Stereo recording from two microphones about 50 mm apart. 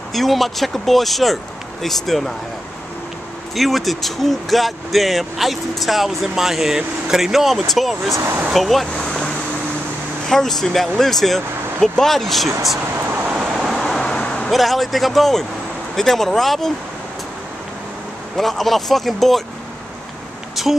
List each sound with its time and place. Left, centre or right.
0.1 s speech: centre
3.5 s speech: centre
9.0 s vehicle: centre
10.2 s speech: centre
13.1 s vehicle: right
13.7 s vehicle: centre
14.1 s vehicle: centre
14.5 s speech: centre
18.3 s speech: centre
20.6 s a sound: centre